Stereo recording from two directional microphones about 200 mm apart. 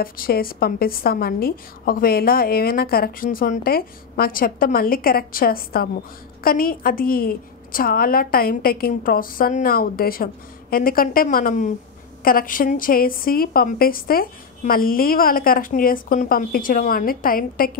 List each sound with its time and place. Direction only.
0.0 s a woman's voice: 45° left (ahead or behind)